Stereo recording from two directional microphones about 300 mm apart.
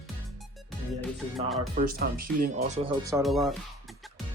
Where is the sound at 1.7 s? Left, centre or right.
Right.